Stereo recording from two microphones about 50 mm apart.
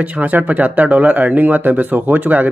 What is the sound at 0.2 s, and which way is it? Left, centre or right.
Speech, right.